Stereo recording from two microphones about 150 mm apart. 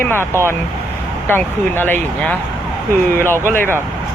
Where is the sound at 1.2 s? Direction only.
15° left (ahead or behind).